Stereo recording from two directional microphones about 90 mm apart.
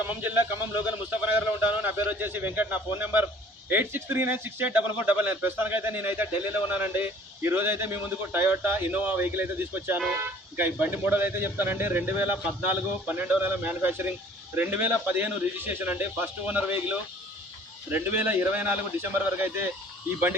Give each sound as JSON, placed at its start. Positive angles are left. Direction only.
{"t": 0.1, "sound": "a man's voice", "side_deg": -20}